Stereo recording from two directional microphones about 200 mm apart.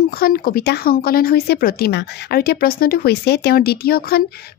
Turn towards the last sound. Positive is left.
turn(degrees=50)  # may be behind; listen again after turning